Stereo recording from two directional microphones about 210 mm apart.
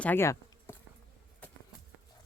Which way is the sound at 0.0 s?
10° left (ahead or behind).